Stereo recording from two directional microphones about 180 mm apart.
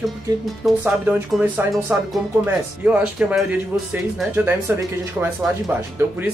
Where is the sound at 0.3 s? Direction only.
20° right (ahead or behind).